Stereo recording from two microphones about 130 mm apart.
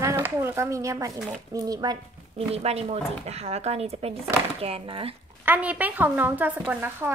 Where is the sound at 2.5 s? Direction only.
50° right (ahead or behind).